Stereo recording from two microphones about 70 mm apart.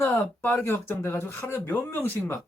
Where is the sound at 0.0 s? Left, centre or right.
Left.